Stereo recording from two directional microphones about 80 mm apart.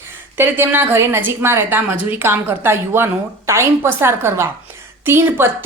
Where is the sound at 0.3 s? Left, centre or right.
Right.